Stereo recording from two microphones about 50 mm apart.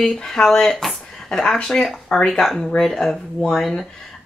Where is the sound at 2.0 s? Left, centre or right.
Centre.